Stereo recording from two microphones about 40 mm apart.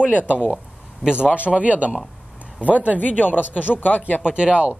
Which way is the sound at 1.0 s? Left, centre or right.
Right.